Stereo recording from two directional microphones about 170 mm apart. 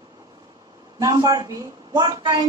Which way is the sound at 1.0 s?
20° right (ahead or behind).